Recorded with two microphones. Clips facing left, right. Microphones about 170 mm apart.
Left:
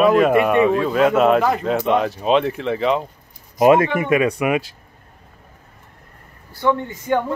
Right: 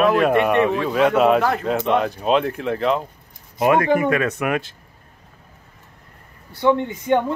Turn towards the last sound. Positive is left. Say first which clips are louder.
# right 2 dB
turn(degrees=-20)  # may be behind; listen again after turning